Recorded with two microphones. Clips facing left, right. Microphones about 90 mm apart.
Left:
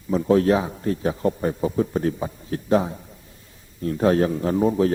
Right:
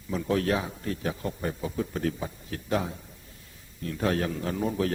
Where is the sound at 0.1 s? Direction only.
30° left (ahead or behind).